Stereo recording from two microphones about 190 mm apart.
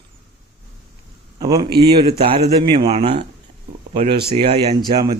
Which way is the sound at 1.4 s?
20° right (ahead or behind).